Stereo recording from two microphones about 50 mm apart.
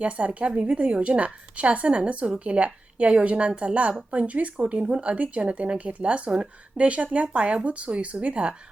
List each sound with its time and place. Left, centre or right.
0.0 s speech: right